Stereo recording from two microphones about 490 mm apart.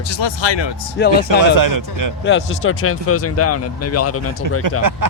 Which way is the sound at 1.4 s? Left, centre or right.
Right.